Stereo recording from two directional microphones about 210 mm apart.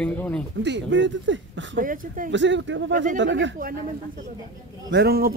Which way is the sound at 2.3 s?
60° right (ahead or behind).